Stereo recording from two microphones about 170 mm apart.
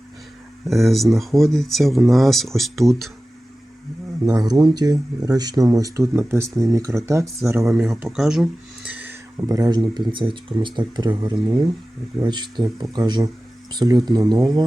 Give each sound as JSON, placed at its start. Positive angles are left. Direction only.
{"t": 0.7, "sound": "speech", "side_deg": 0}
{"t": 4.3, "sound": "speech", "side_deg": -20}
{"t": 7.9, "sound": "speech", "side_deg": -5}